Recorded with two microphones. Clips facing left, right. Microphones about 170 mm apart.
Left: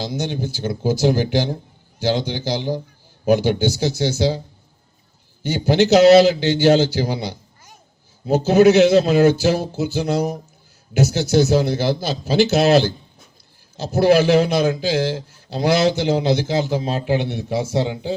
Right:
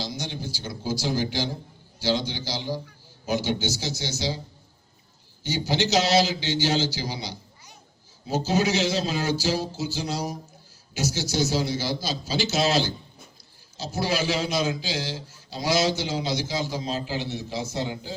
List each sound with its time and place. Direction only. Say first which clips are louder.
0.0 s a man's voice: left 8 dB; 55° left (ahead or behind)
5.4 s a man's voice: left 9 dB; 55° left (ahead or behind)